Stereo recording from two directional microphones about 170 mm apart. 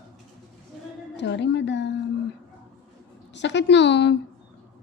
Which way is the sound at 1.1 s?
90° left.